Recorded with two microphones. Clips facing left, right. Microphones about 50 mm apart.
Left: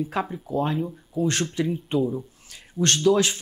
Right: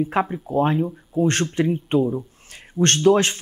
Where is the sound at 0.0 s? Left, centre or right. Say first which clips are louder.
Right 5 dB; right.